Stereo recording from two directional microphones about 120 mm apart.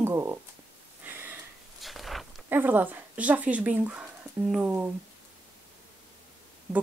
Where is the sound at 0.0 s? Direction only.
20° right (ahead or behind).